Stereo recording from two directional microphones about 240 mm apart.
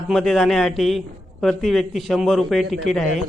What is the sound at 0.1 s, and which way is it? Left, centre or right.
A man's voice, centre.